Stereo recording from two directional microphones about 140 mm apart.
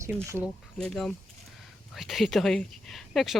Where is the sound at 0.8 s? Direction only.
5° left (ahead or behind).